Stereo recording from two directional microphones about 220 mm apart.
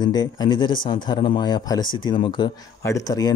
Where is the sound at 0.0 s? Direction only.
20° left (ahead or behind).